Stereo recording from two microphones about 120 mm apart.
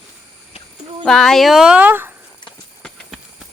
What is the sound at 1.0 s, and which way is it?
Speech, 5° left (ahead or behind).